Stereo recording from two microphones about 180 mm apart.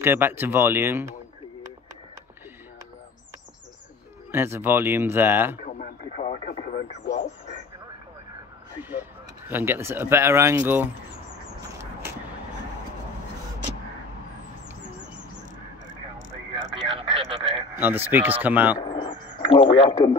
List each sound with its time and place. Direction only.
0.0 s speech: 10° right (ahead or behind)
4.3 s speech: 15° right (ahead or behind)
5.8 s speech: 40° left (ahead or behind)
9.5 s speech: 10° right (ahead or behind)
16.9 s a sound: 30° right (ahead or behind)
17.7 s speech: 10° right (ahead or behind)
18.8 s a sound: 25° left (ahead or behind)